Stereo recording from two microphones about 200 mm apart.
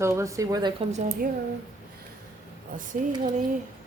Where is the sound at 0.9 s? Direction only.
35° right (ahead or behind).